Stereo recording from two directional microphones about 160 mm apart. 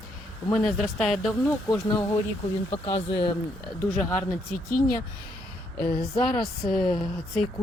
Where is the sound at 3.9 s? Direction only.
10° left (ahead or behind).